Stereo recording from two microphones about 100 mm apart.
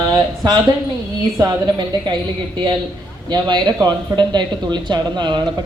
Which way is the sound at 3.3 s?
45° right (ahead or behind).